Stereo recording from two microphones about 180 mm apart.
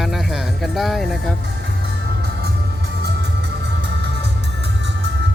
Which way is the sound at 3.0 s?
70° right (ahead or behind).